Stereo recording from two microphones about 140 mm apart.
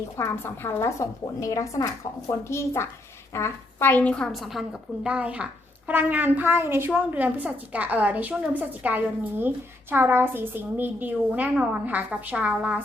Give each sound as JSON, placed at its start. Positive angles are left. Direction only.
{"t": 0.2, "sound": "a woman's voice", "side_deg": 20}